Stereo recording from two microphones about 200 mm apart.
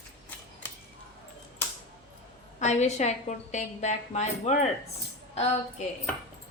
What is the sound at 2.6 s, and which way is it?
A woman's voice, 35° left (ahead or behind).